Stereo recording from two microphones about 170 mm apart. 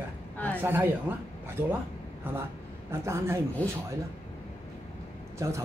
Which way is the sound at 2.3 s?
10° right (ahead or behind).